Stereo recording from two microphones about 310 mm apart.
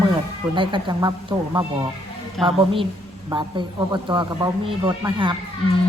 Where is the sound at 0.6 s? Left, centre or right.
Centre.